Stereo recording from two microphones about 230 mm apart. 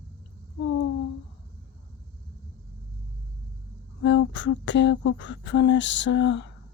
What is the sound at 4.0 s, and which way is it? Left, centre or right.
Speech, left.